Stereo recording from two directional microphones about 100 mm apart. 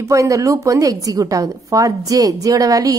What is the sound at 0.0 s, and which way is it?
Speech, 30° right (ahead or behind).